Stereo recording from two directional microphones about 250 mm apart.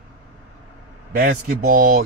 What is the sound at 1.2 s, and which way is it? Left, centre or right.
Speech, right.